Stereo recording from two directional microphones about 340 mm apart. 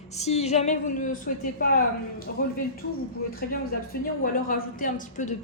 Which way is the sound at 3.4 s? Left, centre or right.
Left.